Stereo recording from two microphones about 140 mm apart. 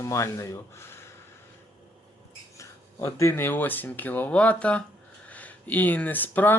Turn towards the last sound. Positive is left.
turn(degrees=15)  # may be behind; listen again after turning